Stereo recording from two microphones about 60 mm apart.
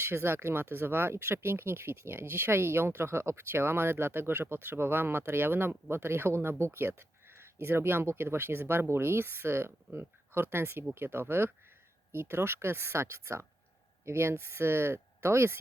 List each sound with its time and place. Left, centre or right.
0.0 s speech: right